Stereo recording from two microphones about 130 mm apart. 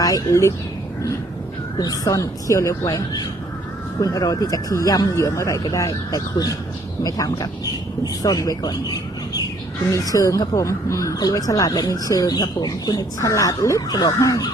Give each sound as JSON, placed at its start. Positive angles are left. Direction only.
{"t": 0.0, "sound": "speech", "side_deg": 25}
{"t": 1.8, "sound": "speech", "side_deg": 30}
{"t": 9.9, "sound": "speech", "side_deg": 25}